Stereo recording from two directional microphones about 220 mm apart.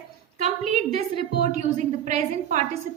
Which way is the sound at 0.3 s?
30° right (ahead or behind).